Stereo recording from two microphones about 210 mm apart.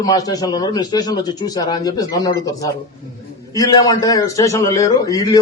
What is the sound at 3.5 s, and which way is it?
A man's voice, 15° left (ahead or behind).